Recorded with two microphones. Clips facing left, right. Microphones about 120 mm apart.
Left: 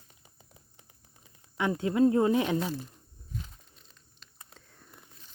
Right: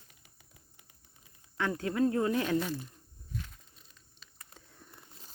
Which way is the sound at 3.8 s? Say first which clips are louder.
Left 1 dB; 5° right (ahead or behind).